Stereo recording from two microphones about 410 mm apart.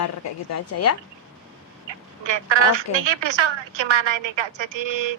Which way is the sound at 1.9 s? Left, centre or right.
Right.